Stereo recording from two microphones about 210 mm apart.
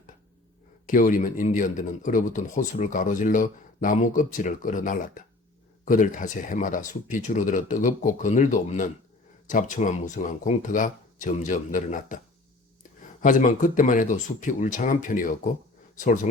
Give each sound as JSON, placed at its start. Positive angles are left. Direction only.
{"t": 0.9, "sound": "speech", "side_deg": 40}
{"t": 13.2, "sound": "speech", "side_deg": 40}